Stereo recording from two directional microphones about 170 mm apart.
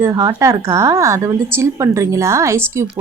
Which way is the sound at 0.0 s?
20° right (ahead or behind).